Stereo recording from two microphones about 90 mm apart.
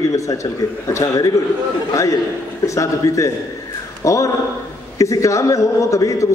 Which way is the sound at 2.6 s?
35° left (ahead or behind).